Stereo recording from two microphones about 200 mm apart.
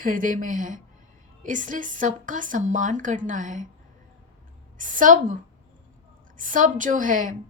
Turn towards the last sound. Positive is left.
turn(degrees=-40)  # may be behind; listen again after turning